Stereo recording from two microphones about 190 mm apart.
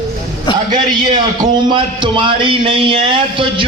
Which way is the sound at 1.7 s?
25° right (ahead or behind).